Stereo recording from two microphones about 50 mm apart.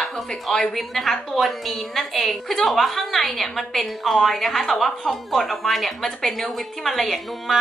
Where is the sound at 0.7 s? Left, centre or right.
Centre.